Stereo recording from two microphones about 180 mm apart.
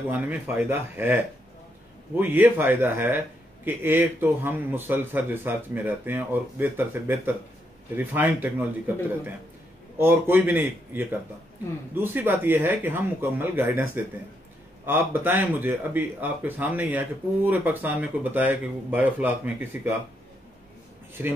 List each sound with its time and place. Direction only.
0.1 s speech: 10° right (ahead or behind)
9.9 s speech: 10° right (ahead or behind)
21.2 s speech: 10° right (ahead or behind)